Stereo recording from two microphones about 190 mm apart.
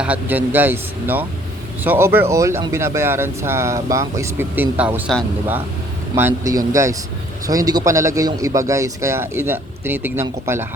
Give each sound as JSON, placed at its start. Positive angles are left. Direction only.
{"t": 0.0, "sound": "speech", "side_deg": -10}
{"t": 6.1, "sound": "speech", "side_deg": -15}